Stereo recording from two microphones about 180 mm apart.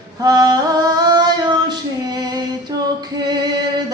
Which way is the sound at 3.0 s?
25° right (ahead or behind).